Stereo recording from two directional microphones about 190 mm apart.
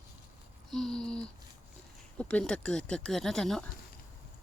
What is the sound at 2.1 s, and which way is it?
Speech, 5° left (ahead or behind).